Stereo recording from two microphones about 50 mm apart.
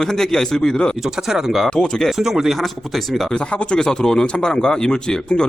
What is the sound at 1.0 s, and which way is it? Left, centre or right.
Speech, centre.